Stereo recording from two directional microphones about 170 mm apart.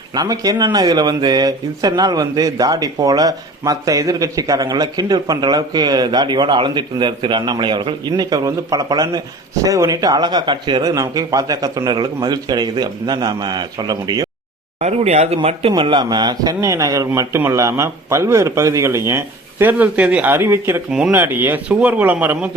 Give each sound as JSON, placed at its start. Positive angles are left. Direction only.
{"t": 0.1, "sound": "speech", "side_deg": -20}
{"t": 14.8, "sound": "speech", "side_deg": -40}